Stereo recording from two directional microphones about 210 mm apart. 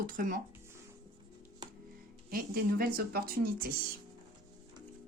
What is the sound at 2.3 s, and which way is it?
Speech, 45° right (ahead or behind).